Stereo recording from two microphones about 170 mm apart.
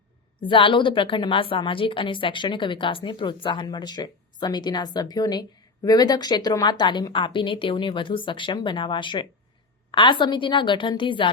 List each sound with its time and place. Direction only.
0.4 s a woman's voice: 30° left (ahead or behind)